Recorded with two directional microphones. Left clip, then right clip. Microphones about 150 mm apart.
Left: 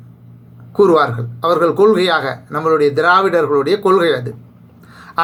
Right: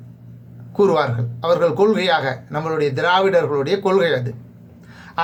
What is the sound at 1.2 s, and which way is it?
Speech, 25° right (ahead or behind).